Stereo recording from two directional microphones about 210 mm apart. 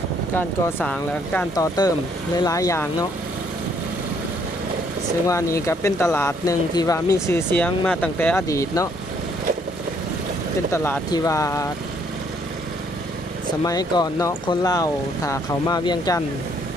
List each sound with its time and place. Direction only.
0.3 s speech: 10° left (ahead or behind)
1.5 s speech: 15° left (ahead or behind)
5.3 s speech: 15° left (ahead or behind)
10.7 s speech: 10° left (ahead or behind)
13.7 s speech: 20° left (ahead or behind)